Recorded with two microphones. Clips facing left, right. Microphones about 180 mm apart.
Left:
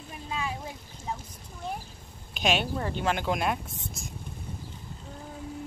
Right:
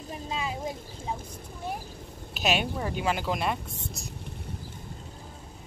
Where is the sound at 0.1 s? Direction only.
25° right (ahead or behind).